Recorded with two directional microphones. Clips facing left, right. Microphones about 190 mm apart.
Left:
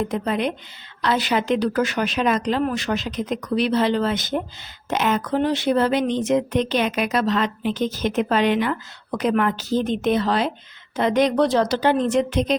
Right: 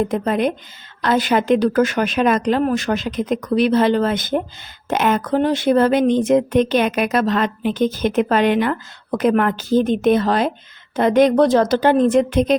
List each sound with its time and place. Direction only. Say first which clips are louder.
0.1 s speech: right 4 dB; 50° right (ahead or behind)